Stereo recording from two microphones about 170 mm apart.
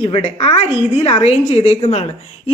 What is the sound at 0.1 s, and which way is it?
A woman's voice, 35° left (ahead or behind).